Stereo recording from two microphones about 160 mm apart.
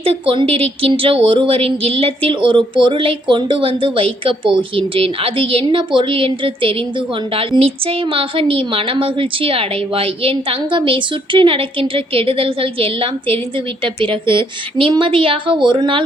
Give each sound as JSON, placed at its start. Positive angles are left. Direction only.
{"t": 0.0, "sound": "speech", "side_deg": -35}